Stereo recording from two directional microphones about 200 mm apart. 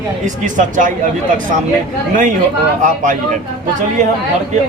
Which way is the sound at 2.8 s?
40° right (ahead or behind).